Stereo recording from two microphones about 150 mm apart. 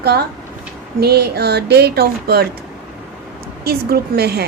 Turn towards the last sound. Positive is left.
turn(degrees=-90)